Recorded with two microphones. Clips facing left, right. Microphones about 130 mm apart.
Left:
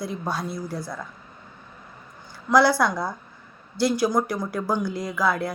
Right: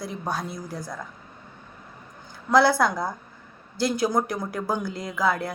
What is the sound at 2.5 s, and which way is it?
Speech, 55° right (ahead or behind).